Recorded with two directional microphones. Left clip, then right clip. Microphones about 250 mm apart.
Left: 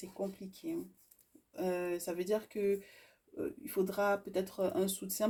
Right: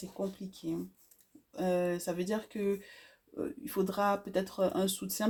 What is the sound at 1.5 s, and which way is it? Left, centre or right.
Speech, right.